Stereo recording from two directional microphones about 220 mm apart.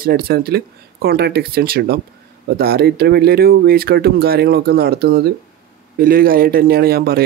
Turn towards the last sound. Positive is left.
turn(degrees=-45)  # may be behind; listen again after turning